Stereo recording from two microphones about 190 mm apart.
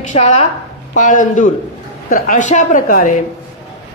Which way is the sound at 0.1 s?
40° left (ahead or behind).